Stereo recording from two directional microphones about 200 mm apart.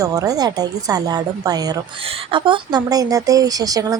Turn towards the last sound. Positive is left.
turn(degrees=-20)  # may be behind; listen again after turning